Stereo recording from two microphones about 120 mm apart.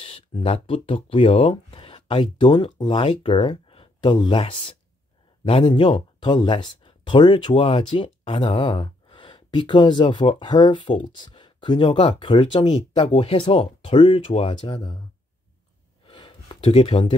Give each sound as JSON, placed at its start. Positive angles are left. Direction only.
{"t": 0.0, "sound": "speech", "side_deg": 50}
{"t": 13.1, "sound": "speech", "side_deg": 60}
{"t": 16.1, "sound": "a sound", "side_deg": 40}
{"t": 16.6, "sound": "speech", "side_deg": 55}